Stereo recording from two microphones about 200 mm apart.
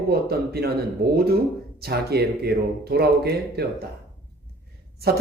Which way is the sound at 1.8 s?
55° right (ahead or behind).